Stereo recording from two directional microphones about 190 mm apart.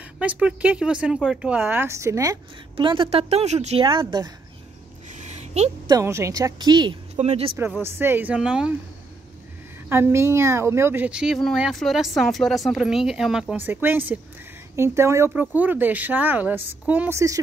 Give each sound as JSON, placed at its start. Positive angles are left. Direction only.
{"t": 0.2, "sound": "speech", "side_deg": -5}
{"t": 2.7, "sound": "a woman's voice", "side_deg": -25}
{"t": 5.1, "sound": "a sound", "side_deg": -35}
{"t": 5.9, "sound": "a woman's voice", "side_deg": -15}
{"t": 7.2, "sound": "speech", "side_deg": -35}
{"t": 7.8, "sound": "speech", "side_deg": -10}
{"t": 9.8, "sound": "speech", "side_deg": -10}